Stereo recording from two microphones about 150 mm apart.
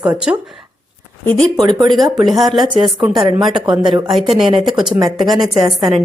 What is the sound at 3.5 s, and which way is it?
Speech, 30° right (ahead or behind).